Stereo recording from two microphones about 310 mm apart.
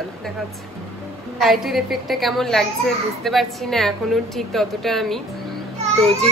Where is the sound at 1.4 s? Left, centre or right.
Centre.